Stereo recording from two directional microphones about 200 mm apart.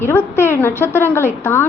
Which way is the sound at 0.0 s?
10° left (ahead or behind).